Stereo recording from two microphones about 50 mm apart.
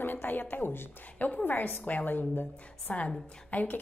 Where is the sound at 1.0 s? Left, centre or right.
Left.